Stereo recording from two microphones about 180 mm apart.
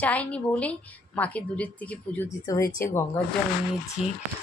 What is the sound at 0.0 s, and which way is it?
A woman's voice, 10° left (ahead or behind).